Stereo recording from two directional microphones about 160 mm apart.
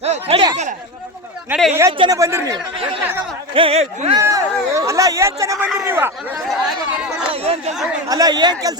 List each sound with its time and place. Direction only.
0.0 s a sound: 40° right (ahead or behind)
1.5 s speech: centre (ahead or behind)
1.9 s speech: 30° right (ahead or behind)
2.1 s speech: 20° right (ahead or behind)
3.5 s speech: 35° right (ahead or behind)
4.2 s a man's voice: 20° right (ahead or behind)
6.5 s chatter: 5° right (ahead or behind)
7.3 s chatter: 40° right (ahead or behind)
8.0 s speech: 25° right (ahead or behind)